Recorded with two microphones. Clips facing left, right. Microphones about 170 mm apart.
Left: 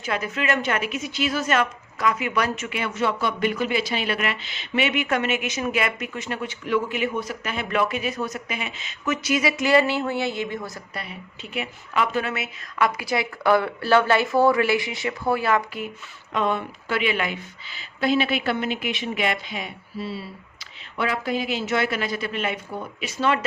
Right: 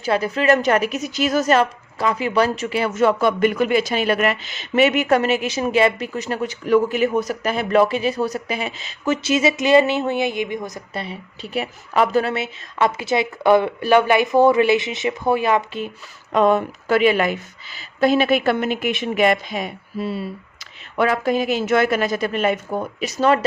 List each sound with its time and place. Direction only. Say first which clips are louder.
0.0 s speech: right 7 dB; 35° right (ahead or behind)
16.3 s speech: right 8 dB; 40° right (ahead or behind)